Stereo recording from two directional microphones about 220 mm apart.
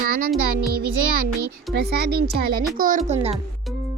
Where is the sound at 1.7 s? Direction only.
50° right (ahead or behind).